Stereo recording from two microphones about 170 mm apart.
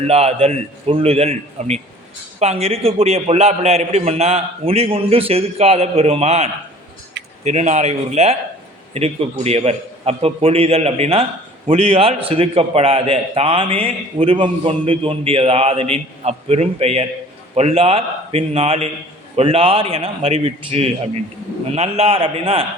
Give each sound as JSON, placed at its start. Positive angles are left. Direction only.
{"t": 0.0, "sound": "a man's voice", "side_deg": -35}